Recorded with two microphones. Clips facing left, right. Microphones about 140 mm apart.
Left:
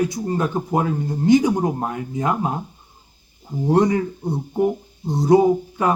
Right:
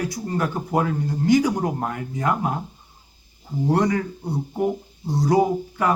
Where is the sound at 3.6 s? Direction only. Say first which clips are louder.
Left 3 dB; 20° left (ahead or behind).